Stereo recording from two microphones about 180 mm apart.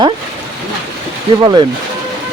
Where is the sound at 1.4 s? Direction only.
25° right (ahead or behind).